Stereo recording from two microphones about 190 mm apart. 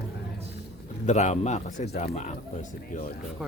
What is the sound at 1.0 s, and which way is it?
A man's voice, 35° left (ahead or behind).